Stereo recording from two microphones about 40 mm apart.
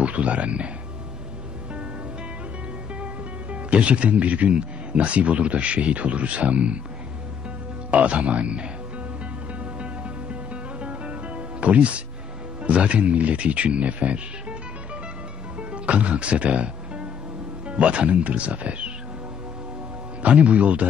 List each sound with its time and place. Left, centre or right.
0.0 s speech: right
3.7 s speech: right
7.9 s speech: right
9.8 s music: right
12.6 s speech: right
15.7 s music: right
17.6 s speech: right
20.2 s speech: right